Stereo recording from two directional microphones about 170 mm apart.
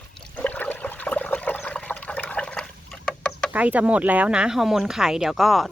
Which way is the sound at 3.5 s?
10° right (ahead or behind).